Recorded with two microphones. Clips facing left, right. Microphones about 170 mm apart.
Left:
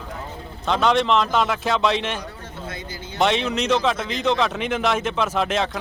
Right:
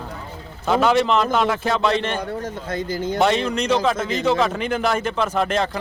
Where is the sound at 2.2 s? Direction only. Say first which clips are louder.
Right 8 dB; 50° right (ahead or behind).